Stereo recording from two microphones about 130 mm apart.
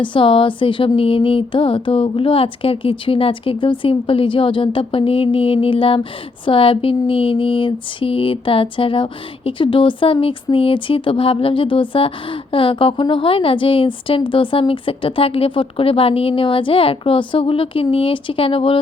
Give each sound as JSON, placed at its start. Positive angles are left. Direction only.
{"t": 0.0, "sound": "speech", "side_deg": 40}